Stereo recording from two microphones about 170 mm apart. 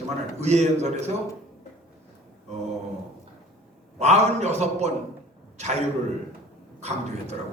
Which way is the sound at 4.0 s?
40° right (ahead or behind).